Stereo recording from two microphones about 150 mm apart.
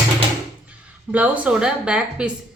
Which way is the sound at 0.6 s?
10° right (ahead or behind).